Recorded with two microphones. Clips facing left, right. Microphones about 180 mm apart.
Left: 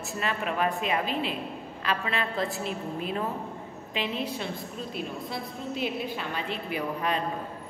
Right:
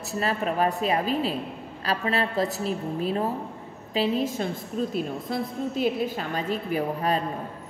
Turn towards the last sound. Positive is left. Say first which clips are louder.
# right 4 dB
turn(degrees=-40)  # may be behind; listen again after turning